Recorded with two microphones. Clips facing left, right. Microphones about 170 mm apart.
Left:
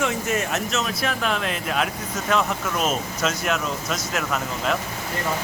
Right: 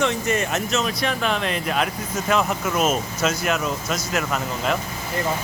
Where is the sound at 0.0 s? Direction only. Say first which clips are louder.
Right 2 dB; 5° left (ahead or behind).